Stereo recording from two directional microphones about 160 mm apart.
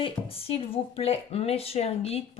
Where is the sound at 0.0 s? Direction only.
35° left (ahead or behind).